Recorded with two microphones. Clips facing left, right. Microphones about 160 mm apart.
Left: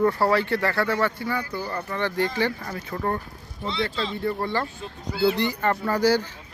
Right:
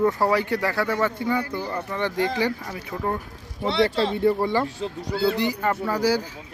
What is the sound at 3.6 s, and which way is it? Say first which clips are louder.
Speech: right 6 dB; 70° right (ahead or behind).